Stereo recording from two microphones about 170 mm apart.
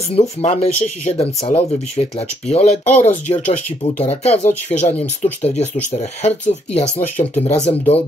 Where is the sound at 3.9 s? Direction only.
40° left (ahead or behind).